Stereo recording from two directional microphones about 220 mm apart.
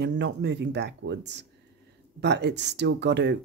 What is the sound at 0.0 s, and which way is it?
Speech, 50° right (ahead or behind).